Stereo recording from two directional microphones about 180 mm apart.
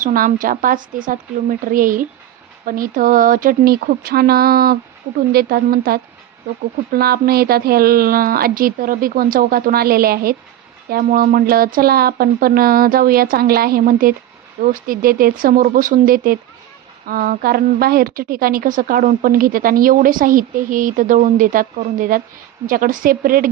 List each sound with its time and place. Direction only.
0.0 s a woman's voice: 50° right (ahead or behind)